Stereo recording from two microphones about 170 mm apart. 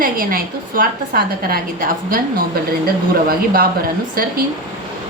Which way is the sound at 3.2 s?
60° right (ahead or behind).